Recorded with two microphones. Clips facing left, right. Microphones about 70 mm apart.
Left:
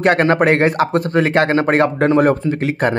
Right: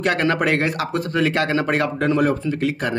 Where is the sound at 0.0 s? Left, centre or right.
Left.